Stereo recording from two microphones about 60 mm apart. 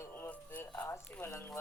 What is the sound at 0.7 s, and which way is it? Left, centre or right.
Speech, left.